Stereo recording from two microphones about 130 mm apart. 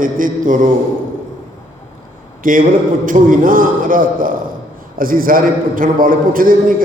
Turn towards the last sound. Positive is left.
turn(degrees=-90)